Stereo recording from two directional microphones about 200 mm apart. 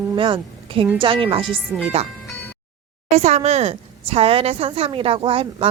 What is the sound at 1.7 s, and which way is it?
Speech, 10° right (ahead or behind).